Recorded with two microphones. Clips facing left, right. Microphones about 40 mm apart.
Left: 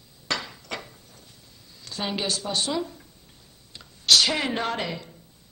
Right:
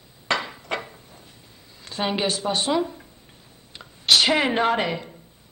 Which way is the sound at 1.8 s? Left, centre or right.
Right.